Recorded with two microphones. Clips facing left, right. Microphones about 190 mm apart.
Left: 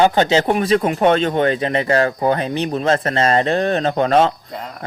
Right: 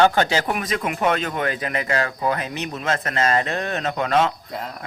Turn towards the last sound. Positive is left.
turn(degrees=35)  # may be behind; listen again after turning